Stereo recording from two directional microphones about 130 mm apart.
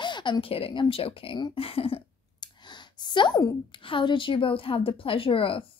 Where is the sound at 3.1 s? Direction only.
35° left (ahead or behind).